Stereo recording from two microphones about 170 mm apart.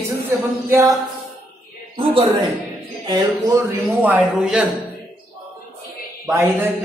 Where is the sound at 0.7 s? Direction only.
15° right (ahead or behind).